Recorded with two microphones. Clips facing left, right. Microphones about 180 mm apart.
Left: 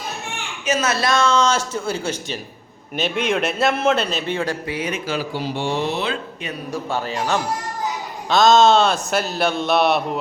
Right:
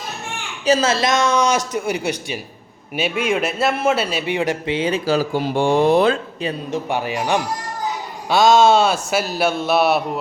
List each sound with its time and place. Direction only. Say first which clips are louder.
0.6 s a man's voice: right 4 dB; 30° right (ahead or behind); by 6.1 s 50° right (ahead or behind)
6.4 s a man's voice: right 4 dB; 25° right (ahead or behind); by 10.0 s 5° right (ahead or behind)